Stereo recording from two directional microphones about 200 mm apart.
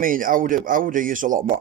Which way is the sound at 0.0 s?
45° right (ahead or behind).